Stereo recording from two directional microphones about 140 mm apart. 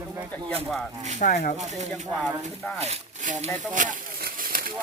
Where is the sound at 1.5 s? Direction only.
55° right (ahead or behind).